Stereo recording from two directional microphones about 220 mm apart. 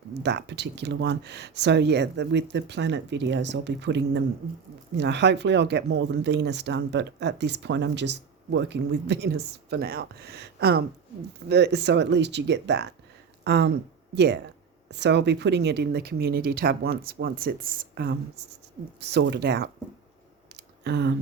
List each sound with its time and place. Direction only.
0.2 s speech: 50° right (ahead or behind)
14.8 s speech: 50° right (ahead or behind)
20.6 s a sound: 50° right (ahead or behind)